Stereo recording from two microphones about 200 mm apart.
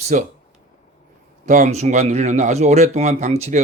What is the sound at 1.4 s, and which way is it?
Speech, 35° right (ahead or behind).